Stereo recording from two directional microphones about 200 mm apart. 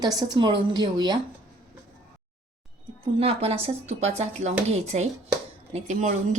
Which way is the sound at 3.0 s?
30° right (ahead or behind).